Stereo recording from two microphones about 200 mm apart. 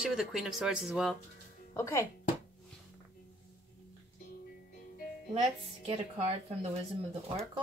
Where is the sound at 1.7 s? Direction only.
15° left (ahead or behind).